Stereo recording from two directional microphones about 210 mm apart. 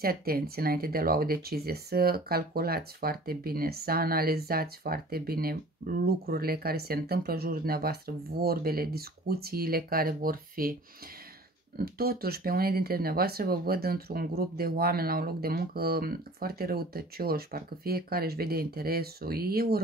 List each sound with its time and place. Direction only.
0.0 s speech: 45° right (ahead or behind)
11.8 s speech: 45° right (ahead or behind)